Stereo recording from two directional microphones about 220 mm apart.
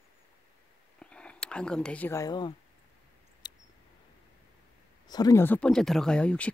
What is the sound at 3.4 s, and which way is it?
Mouse, 20° left (ahead or behind).